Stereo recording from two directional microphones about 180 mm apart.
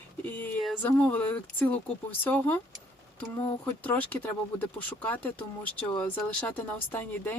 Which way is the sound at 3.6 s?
10° left (ahead or behind).